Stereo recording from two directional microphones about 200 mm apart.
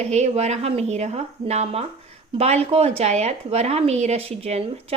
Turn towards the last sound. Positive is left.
turn(degrees=-30)  # may be behind; listen again after turning